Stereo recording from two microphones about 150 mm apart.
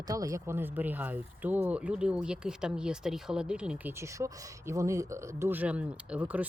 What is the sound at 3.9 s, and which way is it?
Speech, 20° right (ahead or behind).